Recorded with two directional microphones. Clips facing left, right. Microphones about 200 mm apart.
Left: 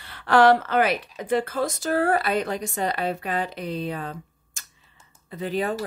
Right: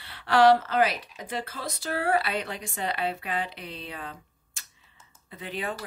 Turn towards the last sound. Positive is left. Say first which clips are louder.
# left 8 dB
turn(degrees=40)  # may be behind; listen again after turning